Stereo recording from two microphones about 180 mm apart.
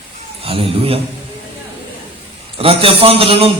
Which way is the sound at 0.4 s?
30° right (ahead or behind).